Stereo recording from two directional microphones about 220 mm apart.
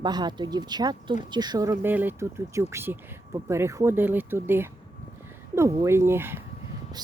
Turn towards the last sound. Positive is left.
turn(degrees=-10)  # may be behind; listen again after turning